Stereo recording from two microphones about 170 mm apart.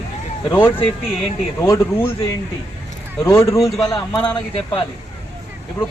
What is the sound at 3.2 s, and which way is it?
A man's voice, 15° left (ahead or behind).